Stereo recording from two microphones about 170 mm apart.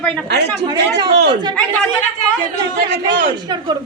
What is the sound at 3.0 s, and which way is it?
Speech, 25° right (ahead or behind).